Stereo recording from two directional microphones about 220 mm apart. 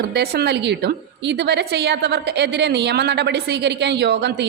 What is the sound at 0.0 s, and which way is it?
A woman's voice, 45° right (ahead or behind).